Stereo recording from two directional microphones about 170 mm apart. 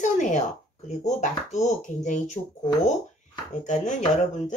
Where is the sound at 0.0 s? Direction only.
45° left (ahead or behind).